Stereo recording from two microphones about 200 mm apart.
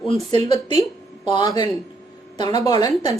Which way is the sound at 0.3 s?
25° left (ahead or behind).